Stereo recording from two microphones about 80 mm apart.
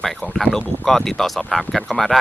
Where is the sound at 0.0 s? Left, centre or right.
Centre.